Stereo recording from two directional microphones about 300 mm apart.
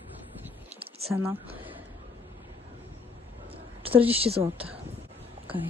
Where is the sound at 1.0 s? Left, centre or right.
Centre.